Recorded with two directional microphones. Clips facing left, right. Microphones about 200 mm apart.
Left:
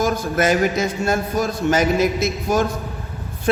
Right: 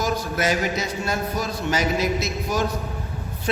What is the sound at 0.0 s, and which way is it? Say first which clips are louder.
A man's voice: left 5 dB; 50° left (ahead or behind).